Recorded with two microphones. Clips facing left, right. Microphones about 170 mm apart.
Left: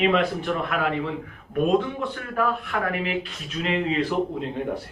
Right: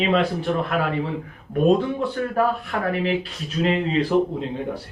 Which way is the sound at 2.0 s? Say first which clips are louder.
Right 5 dB; 35° right (ahead or behind).